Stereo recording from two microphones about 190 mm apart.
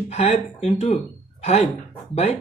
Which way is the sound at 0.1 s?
40° left (ahead or behind).